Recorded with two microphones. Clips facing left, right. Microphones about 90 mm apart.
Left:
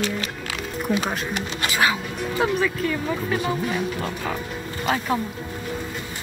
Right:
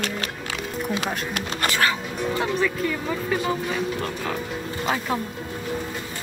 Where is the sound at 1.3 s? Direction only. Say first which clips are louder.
Right 1 dB; 45° right (ahead or behind).